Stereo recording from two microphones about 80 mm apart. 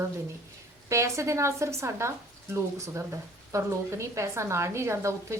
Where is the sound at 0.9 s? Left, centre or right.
Right.